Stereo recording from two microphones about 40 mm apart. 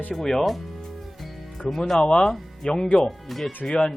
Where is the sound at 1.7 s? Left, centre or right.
Centre.